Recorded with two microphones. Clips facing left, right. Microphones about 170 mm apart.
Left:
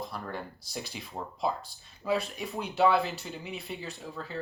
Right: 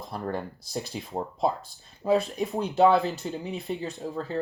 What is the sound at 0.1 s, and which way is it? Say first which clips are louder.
Speech: right 6 dB; 40° right (ahead or behind).